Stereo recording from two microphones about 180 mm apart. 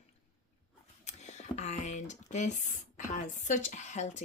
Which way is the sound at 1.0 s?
40° left (ahead or behind).